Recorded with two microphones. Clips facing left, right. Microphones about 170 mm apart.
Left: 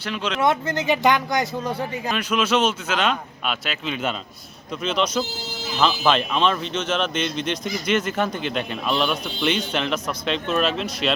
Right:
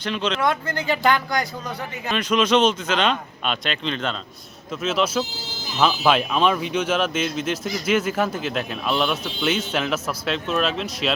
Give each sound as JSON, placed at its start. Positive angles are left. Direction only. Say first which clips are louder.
{"t": 0.0, "sound": "speech", "louder": "right 1 dB", "side_deg": 10}
{"t": 0.4, "sound": "speech", "louder": "left 6 dB", "side_deg": 20}
{"t": 2.0, "sound": "speech", "louder": "right 3 dB", "side_deg": 10}
{"t": 4.8, "sound": "speech", "louder": "right 1 dB", "side_deg": -5}